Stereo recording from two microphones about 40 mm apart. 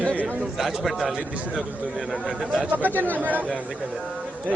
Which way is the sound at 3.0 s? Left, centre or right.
Right.